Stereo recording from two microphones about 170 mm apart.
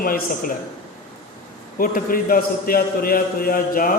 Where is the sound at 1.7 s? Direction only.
55° left (ahead or behind).